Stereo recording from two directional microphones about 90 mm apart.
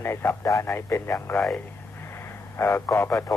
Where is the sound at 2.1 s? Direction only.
25° left (ahead or behind).